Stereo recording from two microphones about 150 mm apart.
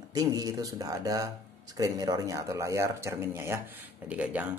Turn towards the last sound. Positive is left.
turn(degrees=-10)  # may be behind; listen again after turning